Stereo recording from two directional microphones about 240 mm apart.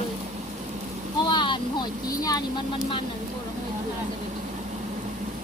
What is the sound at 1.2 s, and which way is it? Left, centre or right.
Vehicle, centre.